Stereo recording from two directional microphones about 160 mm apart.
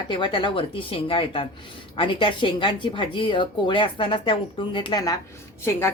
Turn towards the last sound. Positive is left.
turn(degrees=15)  # may be behind; listen again after turning